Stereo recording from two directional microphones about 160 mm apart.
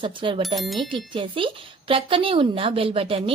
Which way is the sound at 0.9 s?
30° right (ahead or behind).